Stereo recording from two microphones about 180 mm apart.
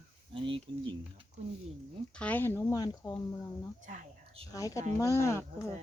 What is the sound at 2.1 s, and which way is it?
Speech, 10° left (ahead or behind).